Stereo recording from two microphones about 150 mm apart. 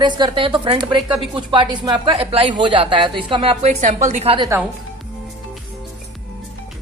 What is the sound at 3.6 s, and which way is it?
Speech, 50° right (ahead or behind).